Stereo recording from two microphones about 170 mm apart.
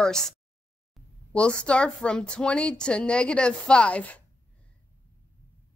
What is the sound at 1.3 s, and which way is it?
Speech, 5° left (ahead or behind).